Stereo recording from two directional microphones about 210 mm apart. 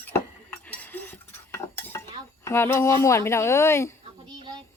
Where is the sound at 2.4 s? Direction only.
10° left (ahead or behind).